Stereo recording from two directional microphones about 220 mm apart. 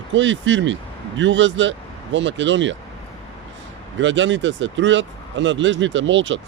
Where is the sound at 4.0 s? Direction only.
55° right (ahead or behind).